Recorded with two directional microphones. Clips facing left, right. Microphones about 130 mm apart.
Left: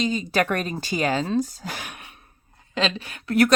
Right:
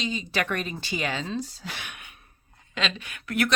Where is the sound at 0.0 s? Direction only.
45° left (ahead or behind).